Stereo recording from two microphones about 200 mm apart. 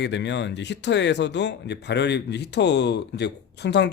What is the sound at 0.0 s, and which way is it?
Speech, 60° left (ahead or behind).